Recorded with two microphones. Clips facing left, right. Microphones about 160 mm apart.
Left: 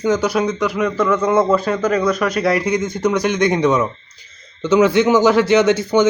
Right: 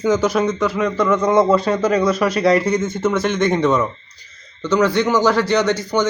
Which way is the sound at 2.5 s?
10° left (ahead or behind).